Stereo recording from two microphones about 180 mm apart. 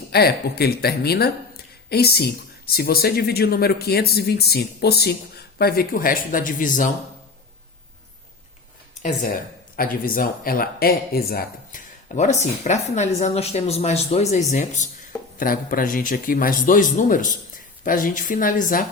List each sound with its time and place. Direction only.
0.1 s speech: 60° left (ahead or behind)
9.0 s speech: 45° left (ahead or behind)
12.1 s a woman's voice: 40° left (ahead or behind)